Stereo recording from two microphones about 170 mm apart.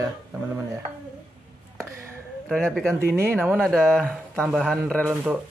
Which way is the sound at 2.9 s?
15° right (ahead or behind).